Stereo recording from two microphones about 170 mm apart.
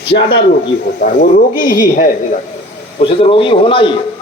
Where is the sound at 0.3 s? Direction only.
30° left (ahead or behind).